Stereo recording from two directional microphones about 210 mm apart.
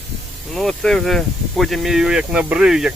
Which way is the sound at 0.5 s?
Centre (ahead or behind).